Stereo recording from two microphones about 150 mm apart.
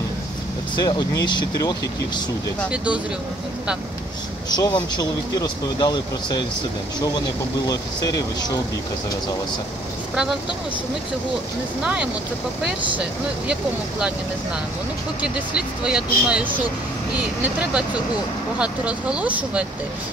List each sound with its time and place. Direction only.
0.7 s speech: 30° left (ahead or behind)
2.7 s speech: 10° right (ahead or behind)
4.5 s speech: 25° left (ahead or behind)
11.8 s speech: 5° right (ahead or behind)
15.2 s speech: 5° right (ahead or behind)